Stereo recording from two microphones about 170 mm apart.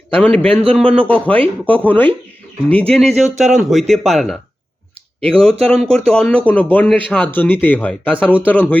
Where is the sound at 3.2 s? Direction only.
45° right (ahead or behind).